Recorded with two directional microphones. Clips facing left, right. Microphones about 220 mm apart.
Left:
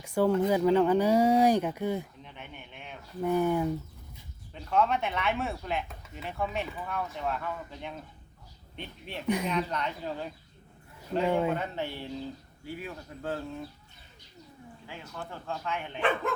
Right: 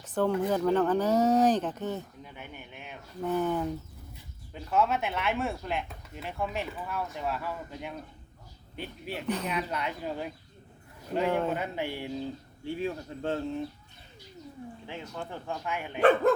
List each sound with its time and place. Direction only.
0.0 s a sound: 10° left (ahead or behind)
0.3 s speech: 10° left (ahead or behind)
2.2 s speech: 5° right (ahead or behind)
3.2 s speech: 10° left (ahead or behind)
4.5 s speech: 5° right (ahead or behind)
9.2 s speech: 10° left (ahead or behind)
9.5 s speech: 5° right (ahead or behind)
11.5 s speech: 10° right (ahead or behind)
12.6 s speech: 25° right (ahead or behind)
14.8 s speech: 20° right (ahead or behind)
16.0 s speech: 40° right (ahead or behind)